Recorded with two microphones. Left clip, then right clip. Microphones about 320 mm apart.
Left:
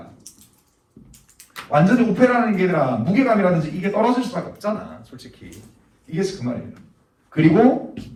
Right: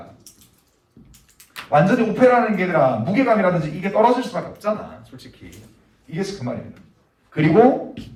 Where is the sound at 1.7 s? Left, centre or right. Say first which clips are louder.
Right 1 dB; right.